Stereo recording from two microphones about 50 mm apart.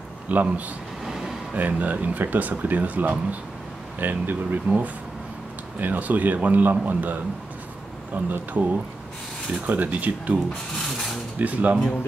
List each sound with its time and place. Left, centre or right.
0.3 s speech: right
1.0 s vehicle: centre
1.5 s speech: right
4.6 s speech: right
11.3 s speech: right